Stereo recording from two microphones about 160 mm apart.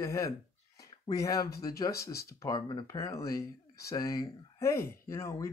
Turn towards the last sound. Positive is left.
turn(degrees=20)  # may be behind; listen again after turning